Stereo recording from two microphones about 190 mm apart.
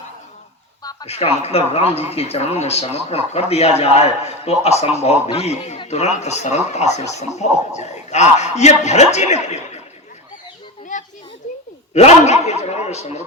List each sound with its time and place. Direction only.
0.8 s a sound: 20° left (ahead or behind)
1.0 s speech: 35° left (ahead or behind)
10.9 s children playing: 40° left (ahead or behind)
11.9 s speech: 35° left (ahead or behind)